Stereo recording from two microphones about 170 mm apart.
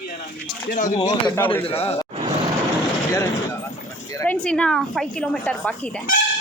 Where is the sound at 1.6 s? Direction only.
35° left (ahead or behind).